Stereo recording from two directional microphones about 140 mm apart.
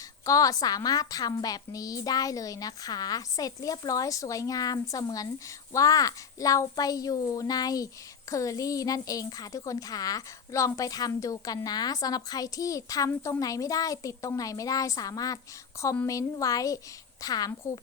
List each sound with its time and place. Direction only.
0.3 s a woman's voice: 25° left (ahead or behind)